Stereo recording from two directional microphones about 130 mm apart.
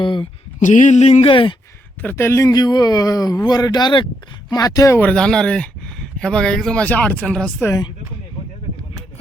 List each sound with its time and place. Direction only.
0.0 s speech: 40° left (ahead or behind)
0.6 s a sound: 75° left (ahead or behind)
1.3 s speech: 40° left (ahead or behind)
2.0 s a man's voice: 15° left (ahead or behind)
4.9 s speech: 10° left (ahead or behind)